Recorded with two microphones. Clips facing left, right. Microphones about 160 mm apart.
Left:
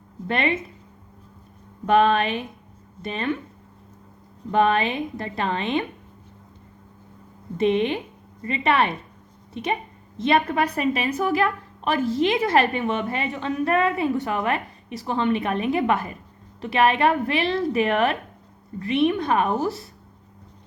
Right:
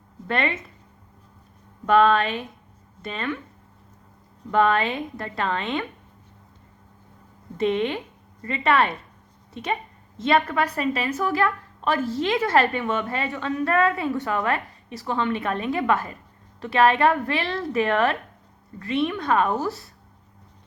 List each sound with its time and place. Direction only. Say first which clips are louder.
0.3 s a woman's voice: left 2 dB; 20° left (ahead or behind)
1.9 s a woman's voice: even; 20° left (ahead or behind)
4.5 s a woman's voice: left 1 dB; 20° left (ahead or behind)
7.6 s a woman's voice: left 2 dB; 20° left (ahead or behind)
10.2 s a woman's voice: left 1 dB; 20° left (ahead or behind)